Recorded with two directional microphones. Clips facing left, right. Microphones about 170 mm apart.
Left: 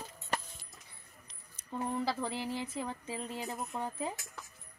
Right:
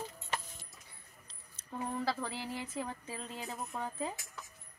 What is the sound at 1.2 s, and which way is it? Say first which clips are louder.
Keys jangling: left 1 dB; 15° left (ahead or behind).